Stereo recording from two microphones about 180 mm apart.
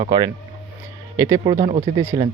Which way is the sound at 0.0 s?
25° right (ahead or behind).